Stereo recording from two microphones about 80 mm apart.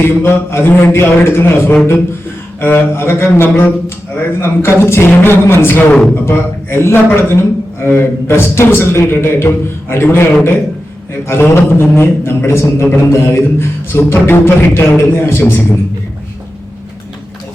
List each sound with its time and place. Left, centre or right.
0.0 s a man's voice: left